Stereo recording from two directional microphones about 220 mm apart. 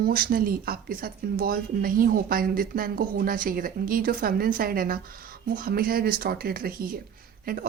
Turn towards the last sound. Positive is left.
turn(degrees=-40)  # may be behind; listen again after turning